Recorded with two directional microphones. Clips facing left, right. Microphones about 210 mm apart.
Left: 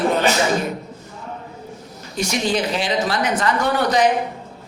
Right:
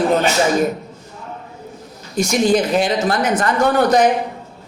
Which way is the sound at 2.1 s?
45° right (ahead or behind).